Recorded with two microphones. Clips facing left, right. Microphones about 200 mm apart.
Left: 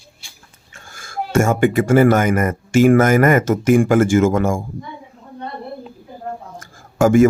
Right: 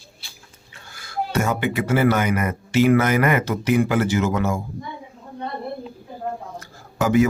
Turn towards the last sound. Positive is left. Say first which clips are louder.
# left 6 dB
turn(degrees=50)  # may be behind; listen again after turning